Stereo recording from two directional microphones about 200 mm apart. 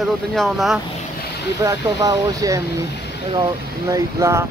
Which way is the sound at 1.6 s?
15° right (ahead or behind).